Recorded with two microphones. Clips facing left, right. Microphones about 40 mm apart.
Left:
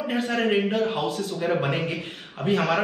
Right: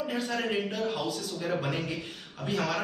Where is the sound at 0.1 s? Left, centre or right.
Left.